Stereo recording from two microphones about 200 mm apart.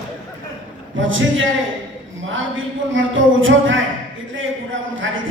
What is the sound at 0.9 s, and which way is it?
A man's voice, 75° right (ahead or behind).